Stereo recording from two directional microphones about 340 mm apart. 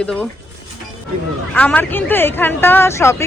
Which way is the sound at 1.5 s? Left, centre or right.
Centre.